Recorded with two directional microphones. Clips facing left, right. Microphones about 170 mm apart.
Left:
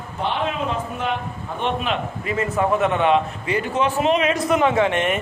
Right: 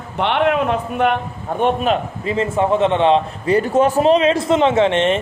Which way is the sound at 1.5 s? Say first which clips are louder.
Right 9 dB; 50° right (ahead or behind).